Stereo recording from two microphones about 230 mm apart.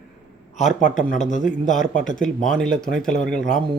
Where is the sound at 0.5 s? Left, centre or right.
Left.